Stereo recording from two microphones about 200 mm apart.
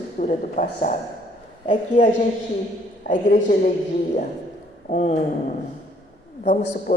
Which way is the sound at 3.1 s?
40° left (ahead or behind).